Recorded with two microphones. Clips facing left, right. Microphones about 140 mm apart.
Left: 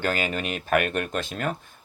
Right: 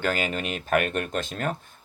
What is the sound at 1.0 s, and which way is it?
Speech, 45° right (ahead or behind).